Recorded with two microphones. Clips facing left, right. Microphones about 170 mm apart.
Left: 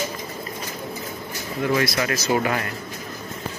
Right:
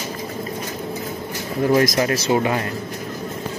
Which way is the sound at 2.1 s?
25° right (ahead or behind).